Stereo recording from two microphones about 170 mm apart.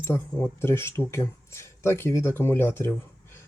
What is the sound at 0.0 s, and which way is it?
Speech, 15° left (ahead or behind).